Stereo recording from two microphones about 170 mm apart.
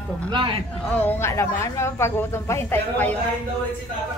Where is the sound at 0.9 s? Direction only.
10° left (ahead or behind).